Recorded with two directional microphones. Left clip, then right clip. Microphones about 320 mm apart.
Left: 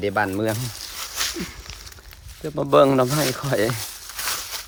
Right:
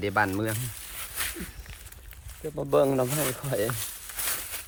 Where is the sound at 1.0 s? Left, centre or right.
Centre.